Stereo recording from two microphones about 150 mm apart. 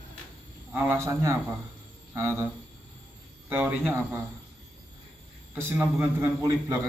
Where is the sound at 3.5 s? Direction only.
10° right (ahead or behind).